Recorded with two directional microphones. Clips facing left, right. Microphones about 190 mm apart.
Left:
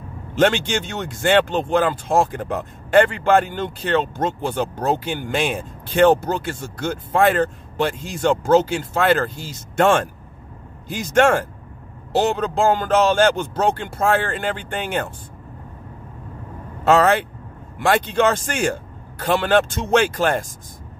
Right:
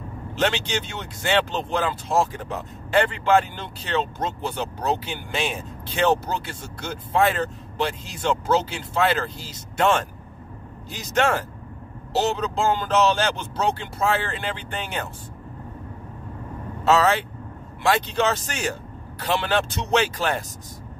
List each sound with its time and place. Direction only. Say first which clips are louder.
0.4 s speech: left 6 dB; 50° left (ahead or behind)
16.8 s speech: left 4 dB; 55° left (ahead or behind)